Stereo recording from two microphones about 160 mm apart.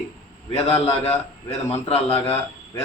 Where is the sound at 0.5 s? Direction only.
40° left (ahead or behind).